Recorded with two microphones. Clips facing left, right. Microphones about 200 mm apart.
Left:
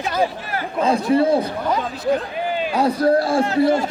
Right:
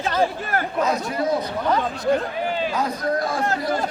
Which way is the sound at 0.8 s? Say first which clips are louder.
Left 11 dB; 30° left (ahead or behind).